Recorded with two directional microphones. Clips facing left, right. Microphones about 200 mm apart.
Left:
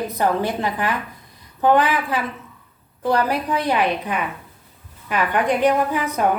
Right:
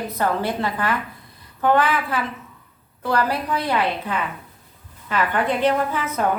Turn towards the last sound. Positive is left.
turn(degrees=15)  # may be behind; listen again after turning